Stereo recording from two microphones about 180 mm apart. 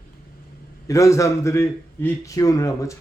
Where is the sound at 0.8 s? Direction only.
15° left (ahead or behind).